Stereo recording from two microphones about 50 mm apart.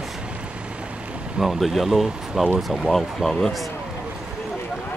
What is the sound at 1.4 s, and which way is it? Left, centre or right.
Speech, centre.